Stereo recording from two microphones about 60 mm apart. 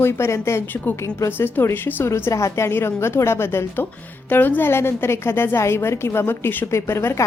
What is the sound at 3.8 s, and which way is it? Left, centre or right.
A woman's voice, left.